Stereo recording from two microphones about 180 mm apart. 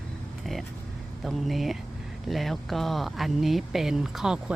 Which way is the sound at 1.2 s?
Centre (ahead or behind).